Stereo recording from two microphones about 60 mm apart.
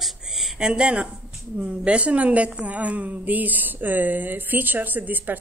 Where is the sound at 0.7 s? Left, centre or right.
Centre.